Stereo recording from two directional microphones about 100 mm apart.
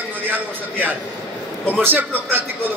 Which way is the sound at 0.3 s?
20° right (ahead or behind).